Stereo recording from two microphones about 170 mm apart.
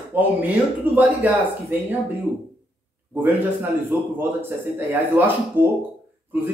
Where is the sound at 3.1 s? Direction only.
10° right (ahead or behind).